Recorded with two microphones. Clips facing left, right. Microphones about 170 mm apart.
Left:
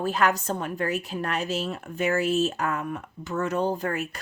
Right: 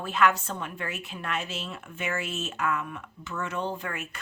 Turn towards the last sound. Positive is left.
turn(degrees=40)  # may be behind; listen again after turning